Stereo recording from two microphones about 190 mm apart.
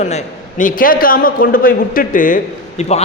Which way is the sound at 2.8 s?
35° left (ahead or behind).